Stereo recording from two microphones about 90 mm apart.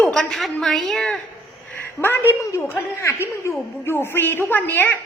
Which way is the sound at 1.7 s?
25° left (ahead or behind).